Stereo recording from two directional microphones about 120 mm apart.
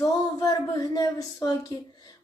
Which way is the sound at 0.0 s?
30° left (ahead or behind).